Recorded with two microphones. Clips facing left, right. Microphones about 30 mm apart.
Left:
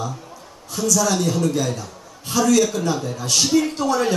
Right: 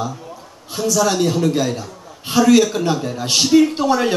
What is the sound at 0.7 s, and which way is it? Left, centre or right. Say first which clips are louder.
A man's voice: right 3 dB; right.